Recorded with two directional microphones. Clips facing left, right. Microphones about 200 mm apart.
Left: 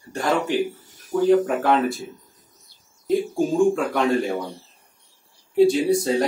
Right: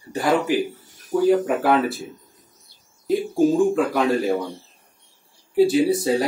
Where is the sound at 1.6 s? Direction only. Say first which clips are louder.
Right 1 dB; 5° right (ahead or behind).